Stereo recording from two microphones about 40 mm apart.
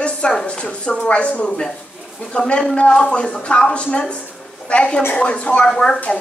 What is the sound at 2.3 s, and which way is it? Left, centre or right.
A woman's voice, left.